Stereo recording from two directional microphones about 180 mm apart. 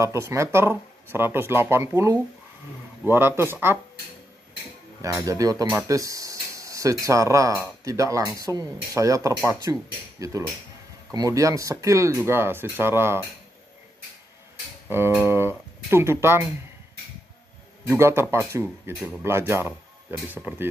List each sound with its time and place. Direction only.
0.0 s speech: 15° right (ahead or behind)
5.0 s speech: 20° right (ahead or behind)
14.9 s speech: 15° right (ahead or behind)
17.8 s speech: 15° right (ahead or behind)